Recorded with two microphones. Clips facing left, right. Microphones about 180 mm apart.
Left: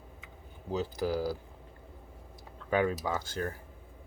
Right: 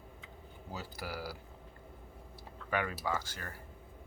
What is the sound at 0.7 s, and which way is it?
Speech, 20° left (ahead or behind).